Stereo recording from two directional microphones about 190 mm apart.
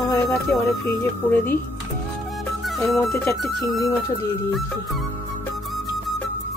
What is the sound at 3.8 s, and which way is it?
Speech, 20° left (ahead or behind).